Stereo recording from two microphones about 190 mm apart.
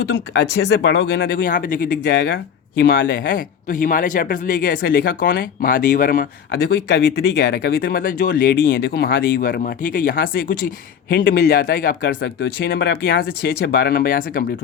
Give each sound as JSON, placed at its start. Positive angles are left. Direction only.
{"t": 0.0, "sound": "speech", "side_deg": 70}
{"t": 1.3, "sound": "speech", "side_deg": 45}